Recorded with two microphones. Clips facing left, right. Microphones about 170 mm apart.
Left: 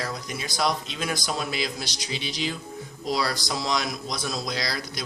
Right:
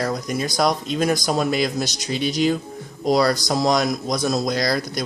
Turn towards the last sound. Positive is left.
turn(degrees=-45)  # may be behind; listen again after turning